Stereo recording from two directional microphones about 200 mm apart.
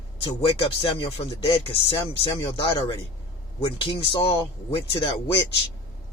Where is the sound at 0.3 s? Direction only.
25° left (ahead or behind).